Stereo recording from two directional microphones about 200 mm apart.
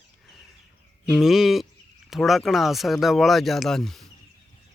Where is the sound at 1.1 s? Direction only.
Centre (ahead or behind).